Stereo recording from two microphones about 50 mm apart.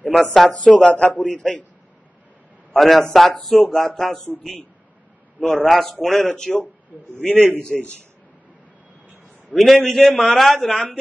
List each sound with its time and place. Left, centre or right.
0.1 s a man's voice: centre
0.7 s a man's voice: centre
2.7 s a man's voice: centre
9.6 s a man's voice: centre